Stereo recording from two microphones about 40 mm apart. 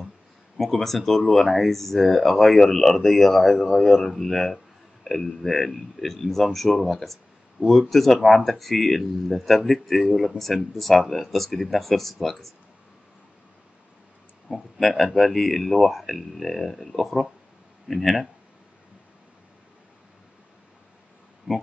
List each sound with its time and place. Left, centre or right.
0.6 s speech: centre
7.6 s speech: right
7.9 s speech: centre
14.5 s speech: centre
21.5 s speech: centre